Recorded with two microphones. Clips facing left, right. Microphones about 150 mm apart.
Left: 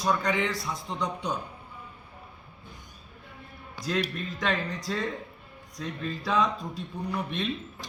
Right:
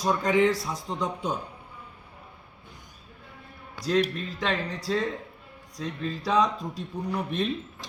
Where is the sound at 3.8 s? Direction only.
30° right (ahead or behind).